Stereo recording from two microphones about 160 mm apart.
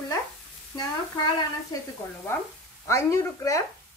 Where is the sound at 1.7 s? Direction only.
20° left (ahead or behind).